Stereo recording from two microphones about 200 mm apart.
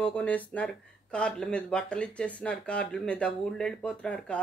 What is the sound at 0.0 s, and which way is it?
Speech, 10° left (ahead or behind).